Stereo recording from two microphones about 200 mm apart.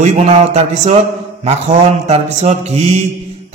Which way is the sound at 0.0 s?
35° right (ahead or behind).